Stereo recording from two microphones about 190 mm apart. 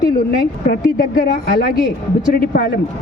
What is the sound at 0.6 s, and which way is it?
A woman's voice, 50° left (ahead or behind).